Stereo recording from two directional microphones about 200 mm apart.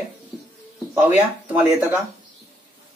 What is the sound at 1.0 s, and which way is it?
Speech, 10° right (ahead or behind).